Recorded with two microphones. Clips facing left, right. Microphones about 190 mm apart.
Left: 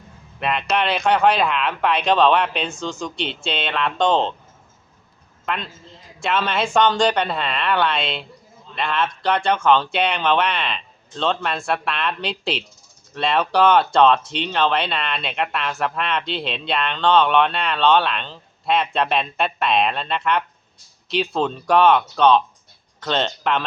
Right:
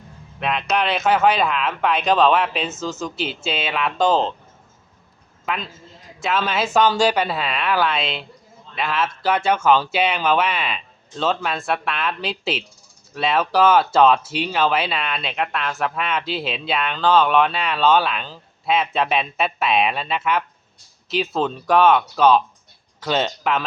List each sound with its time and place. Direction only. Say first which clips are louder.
0.3 s speech: even; centre (ahead or behind)
5.5 s speech: even; centre (ahead or behind)